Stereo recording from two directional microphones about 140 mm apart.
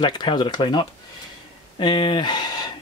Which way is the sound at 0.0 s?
35° left (ahead or behind).